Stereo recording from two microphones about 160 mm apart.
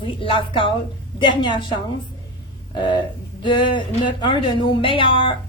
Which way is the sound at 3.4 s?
30° left (ahead or behind).